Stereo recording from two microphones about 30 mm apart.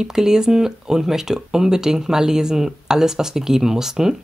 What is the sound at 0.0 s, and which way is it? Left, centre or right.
Speech, centre.